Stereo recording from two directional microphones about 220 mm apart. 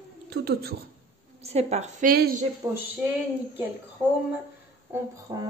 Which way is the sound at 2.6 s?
15° right (ahead or behind).